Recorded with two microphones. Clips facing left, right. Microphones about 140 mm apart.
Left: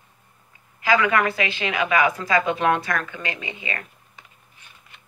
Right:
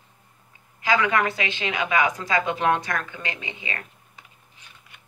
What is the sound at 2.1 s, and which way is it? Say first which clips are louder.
A woman's voice: left 3 dB; 15° right (ahead or behind).